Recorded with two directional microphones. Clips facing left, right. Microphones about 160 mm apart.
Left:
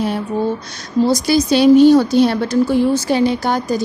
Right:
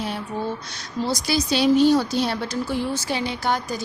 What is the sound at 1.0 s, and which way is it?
A woman's voice, 45° left (ahead or behind).